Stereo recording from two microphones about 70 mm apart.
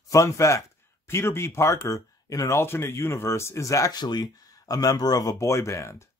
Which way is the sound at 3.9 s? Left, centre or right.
Left.